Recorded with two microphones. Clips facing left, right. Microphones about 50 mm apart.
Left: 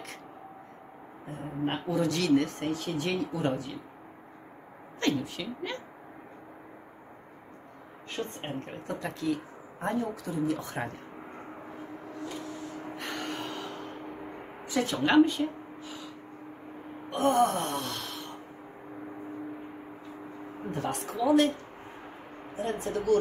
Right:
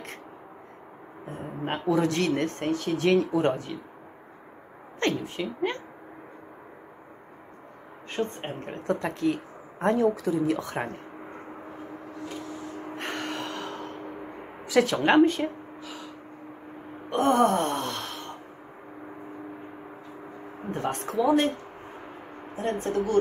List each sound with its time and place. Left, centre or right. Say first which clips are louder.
1.2 s speech: left 1 dB; right
5.0 s a woman's voice: right 2 dB; right
8.4 s a woman's voice: right 2 dB; right
8.8 s speech: right 6 dB; right
9.8 s speech: right 8 dB; right
12.9 s gasp: right 4 dB; right
14.7 s speech: right 7 dB; right
15.0 s speech: left 1 dB; right
17.1 s gasp: right 3 dB; right
20.7 s speech: right 6 dB; right
22.6 s speech: right 4 dB; right